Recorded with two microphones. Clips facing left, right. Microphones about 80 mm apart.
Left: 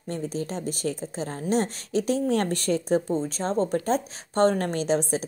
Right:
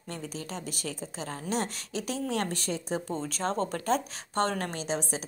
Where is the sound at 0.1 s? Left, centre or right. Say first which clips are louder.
Left 7 dB; left.